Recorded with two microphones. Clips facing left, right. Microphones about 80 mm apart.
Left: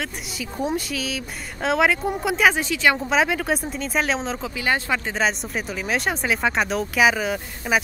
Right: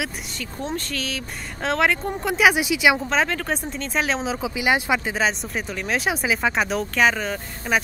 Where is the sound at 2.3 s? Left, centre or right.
Centre.